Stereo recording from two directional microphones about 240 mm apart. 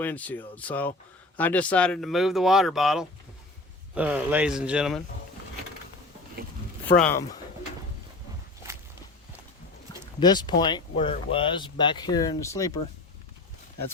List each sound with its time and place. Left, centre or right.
0.0 s speech: centre
7.0 s speech: centre
10.2 s speech: centre